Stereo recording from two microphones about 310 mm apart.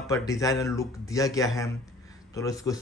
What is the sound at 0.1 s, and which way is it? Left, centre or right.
Speech, centre.